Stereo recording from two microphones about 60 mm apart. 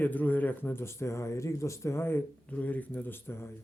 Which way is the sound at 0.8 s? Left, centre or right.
Left.